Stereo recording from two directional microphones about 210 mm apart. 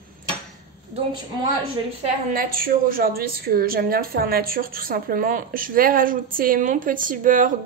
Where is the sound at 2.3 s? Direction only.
45° right (ahead or behind).